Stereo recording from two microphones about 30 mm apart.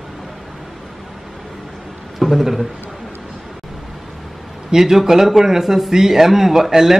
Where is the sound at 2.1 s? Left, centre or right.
Centre.